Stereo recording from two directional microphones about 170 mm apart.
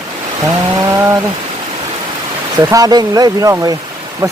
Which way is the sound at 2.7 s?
20° right (ahead or behind).